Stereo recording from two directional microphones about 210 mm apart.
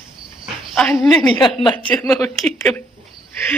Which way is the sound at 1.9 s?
5° left (ahead or behind).